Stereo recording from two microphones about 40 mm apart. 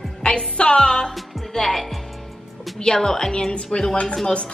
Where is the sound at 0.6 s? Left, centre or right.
Left.